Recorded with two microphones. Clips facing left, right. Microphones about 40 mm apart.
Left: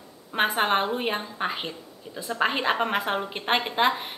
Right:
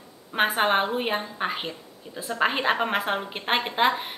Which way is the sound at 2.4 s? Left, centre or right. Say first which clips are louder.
Right 1 dB; centre.